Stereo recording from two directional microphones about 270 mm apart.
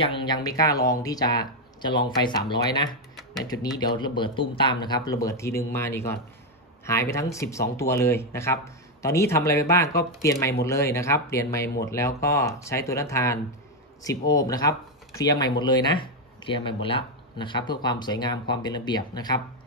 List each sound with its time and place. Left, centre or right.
0.0 s speech: centre